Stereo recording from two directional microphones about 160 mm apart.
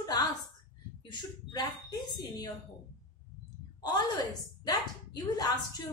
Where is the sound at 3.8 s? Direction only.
25° left (ahead or behind).